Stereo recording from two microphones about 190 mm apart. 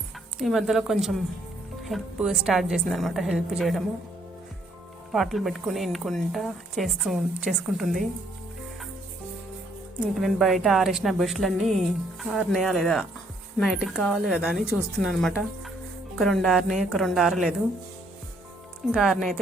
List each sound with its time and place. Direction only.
0.3 s a woman's voice: centre (ahead or behind)
5.1 s a woman's voice: centre (ahead or behind)
10.2 s a woman's voice: centre (ahead or behind)
18.9 s a woman's voice: centre (ahead or behind)